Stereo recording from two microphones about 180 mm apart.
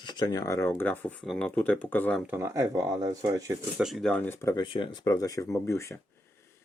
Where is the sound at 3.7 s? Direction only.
Centre (ahead or behind); by 5.9 s 15° left (ahead or behind).